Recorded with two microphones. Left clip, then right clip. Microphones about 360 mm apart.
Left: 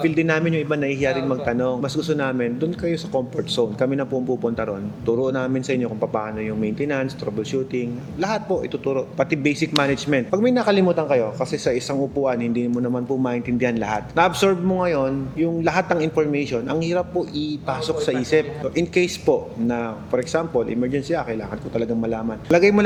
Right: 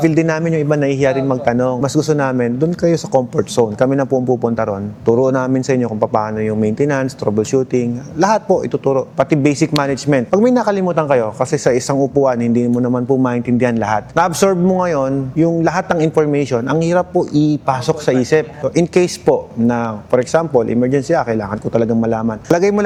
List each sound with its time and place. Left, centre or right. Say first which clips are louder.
0.0 s a man's voice: right 5 dB; right